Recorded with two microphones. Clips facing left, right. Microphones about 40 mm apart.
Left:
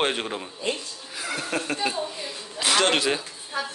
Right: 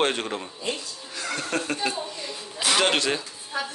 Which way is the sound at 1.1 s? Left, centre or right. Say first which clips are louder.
Even; centre.